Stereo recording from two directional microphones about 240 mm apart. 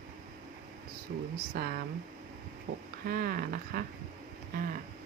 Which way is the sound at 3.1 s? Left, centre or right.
Right.